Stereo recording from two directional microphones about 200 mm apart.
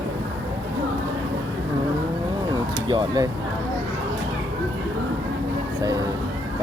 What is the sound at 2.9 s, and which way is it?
Speech, 20° right (ahead or behind).